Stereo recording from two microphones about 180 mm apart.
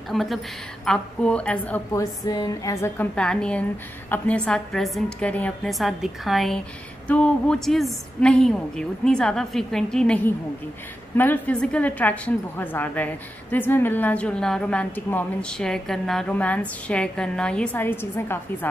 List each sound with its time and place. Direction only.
0.1 s a woman's voice: centre (ahead or behind)
2.2 s a woman's voice: 20° left (ahead or behind)
3.2 s a woman's voice: 5° left (ahead or behind)